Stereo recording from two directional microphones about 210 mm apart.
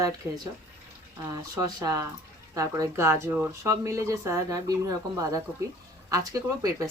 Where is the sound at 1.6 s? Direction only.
15° right (ahead or behind).